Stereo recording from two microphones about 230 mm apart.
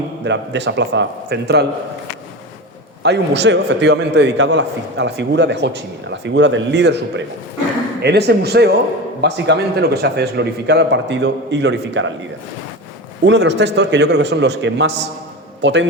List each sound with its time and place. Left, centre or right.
0.3 s a man's voice: right
3.0 s a man's voice: right
13.2 s a man's voice: right